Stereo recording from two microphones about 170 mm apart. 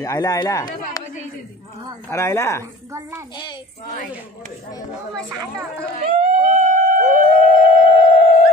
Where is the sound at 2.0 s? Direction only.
15° left (ahead or behind).